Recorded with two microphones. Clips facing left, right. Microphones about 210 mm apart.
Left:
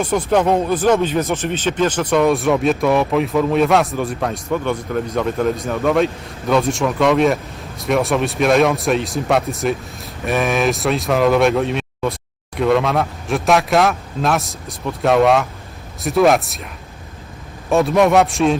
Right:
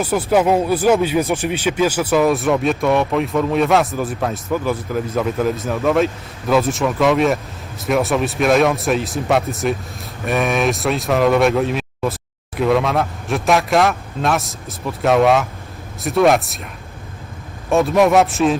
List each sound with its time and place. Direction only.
0.0 s speech: 5° right (ahead or behind)
17.7 s speech: centre (ahead or behind)